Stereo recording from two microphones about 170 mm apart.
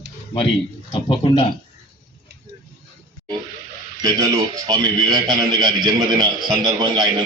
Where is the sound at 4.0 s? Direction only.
25° right (ahead or behind).